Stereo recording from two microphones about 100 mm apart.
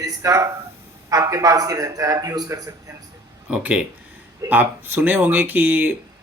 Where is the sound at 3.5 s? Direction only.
10° right (ahead or behind).